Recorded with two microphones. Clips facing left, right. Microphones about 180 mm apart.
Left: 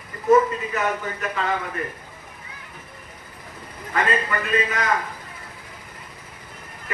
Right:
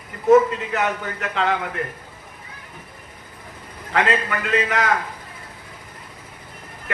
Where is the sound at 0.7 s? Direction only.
80° right.